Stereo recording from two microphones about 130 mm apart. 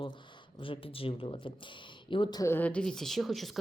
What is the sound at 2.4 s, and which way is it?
Speech, 15° left (ahead or behind).